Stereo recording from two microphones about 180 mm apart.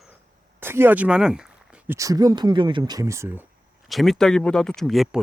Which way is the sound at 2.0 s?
20° right (ahead or behind).